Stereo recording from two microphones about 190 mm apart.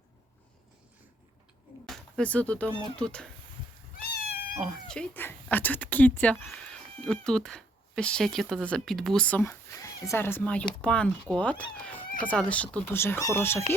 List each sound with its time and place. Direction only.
1.9 s speech: 5° left (ahead or behind)
4.0 s cat: 55° left (ahead or behind)
4.5 s speech: centre (ahead or behind)